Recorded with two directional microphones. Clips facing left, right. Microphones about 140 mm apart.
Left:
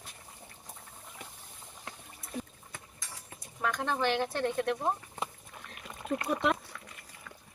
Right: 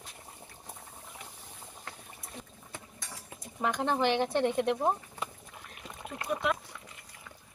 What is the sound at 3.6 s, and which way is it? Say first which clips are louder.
Speech: right 2 dB; 20° right (ahead or behind).